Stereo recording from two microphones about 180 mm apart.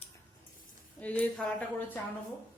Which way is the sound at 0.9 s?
10° left (ahead or behind).